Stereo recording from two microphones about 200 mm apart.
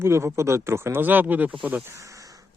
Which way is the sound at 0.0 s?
15° right (ahead or behind).